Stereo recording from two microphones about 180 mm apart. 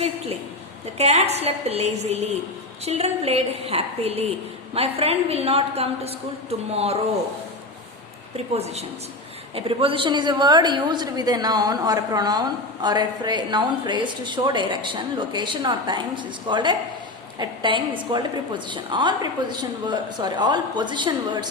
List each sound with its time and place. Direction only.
0.9 s a woman's voice: 35° right (ahead or behind)
8.5 s a woman's voice: 35° right (ahead or behind)